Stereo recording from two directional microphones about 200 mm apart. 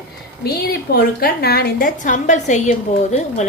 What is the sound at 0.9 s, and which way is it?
A woman's voice, 50° left (ahead or behind).